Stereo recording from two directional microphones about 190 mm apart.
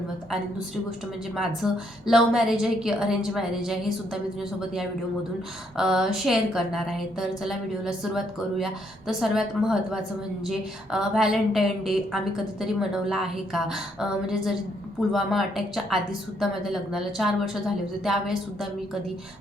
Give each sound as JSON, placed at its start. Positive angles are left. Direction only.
{"t": 1.4, "sound": "a woman's voice", "side_deg": 0}
{"t": 5.7, "sound": "a woman's voice", "side_deg": 0}